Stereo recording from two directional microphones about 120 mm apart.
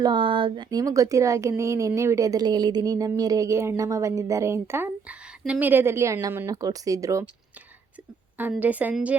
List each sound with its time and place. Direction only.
0.0 s a woman's voice: 40° right (ahead or behind); by 7.3 s 25° right (ahead or behind)
8.4 s a woman's voice: 15° right (ahead or behind)